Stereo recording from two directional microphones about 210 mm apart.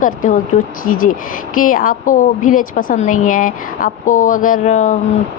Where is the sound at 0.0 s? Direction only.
40° left (ahead or behind).